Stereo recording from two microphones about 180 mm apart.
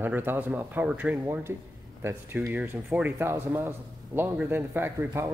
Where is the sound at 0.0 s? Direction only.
10° right (ahead or behind).